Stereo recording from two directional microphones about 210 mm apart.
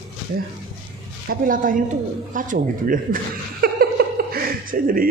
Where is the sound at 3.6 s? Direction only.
45° right (ahead or behind).